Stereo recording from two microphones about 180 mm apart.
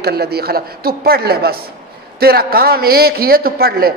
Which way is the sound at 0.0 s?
60° right (ahead or behind).